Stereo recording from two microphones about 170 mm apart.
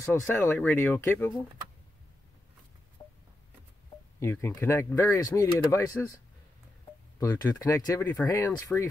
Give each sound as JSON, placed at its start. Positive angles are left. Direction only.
{"t": 0.0, "sound": "speech", "side_deg": 15}
{"t": 3.0, "sound": "a sound", "side_deg": 25}
{"t": 4.2, "sound": "speech", "side_deg": 15}
{"t": 7.2, "sound": "speech", "side_deg": 20}